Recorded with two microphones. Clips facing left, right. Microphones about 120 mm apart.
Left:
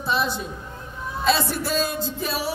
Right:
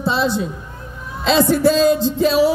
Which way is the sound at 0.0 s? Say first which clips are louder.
Right 5 dB; 85° right.